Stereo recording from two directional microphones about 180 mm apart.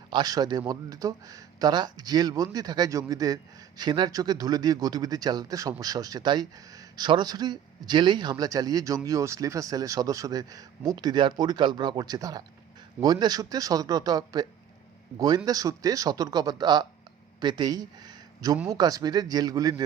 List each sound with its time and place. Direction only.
0.1 s speech: 20° right (ahead or behind)
15.4 s speech: 20° right (ahead or behind)